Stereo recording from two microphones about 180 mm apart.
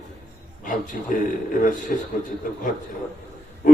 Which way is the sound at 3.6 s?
50° left (ahead or behind).